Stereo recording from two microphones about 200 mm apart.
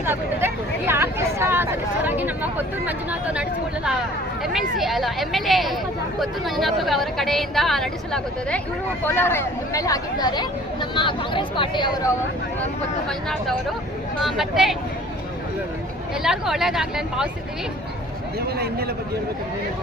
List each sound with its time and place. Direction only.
0.0 s a sound: 10° right (ahead or behind)
2.8 s speech: 5° right (ahead or behind)
4.5 s a woman's voice: centre (ahead or behind); by 12.1 s 25° left (ahead or behind)
14.2 s a woman's voice: centre (ahead or behind)
16.2 s a woman's voice: centre (ahead or behind)
18.5 s a man's voice: 50° right (ahead or behind)